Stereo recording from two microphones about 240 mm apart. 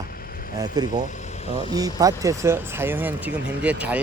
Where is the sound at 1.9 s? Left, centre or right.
Centre.